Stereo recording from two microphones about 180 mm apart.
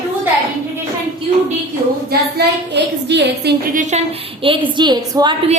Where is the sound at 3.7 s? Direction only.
40° right (ahead or behind); by 5.3 s 25° right (ahead or behind).